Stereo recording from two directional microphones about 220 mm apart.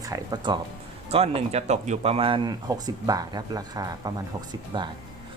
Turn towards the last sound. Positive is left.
turn(degrees=-20)  # may be behind; listen again after turning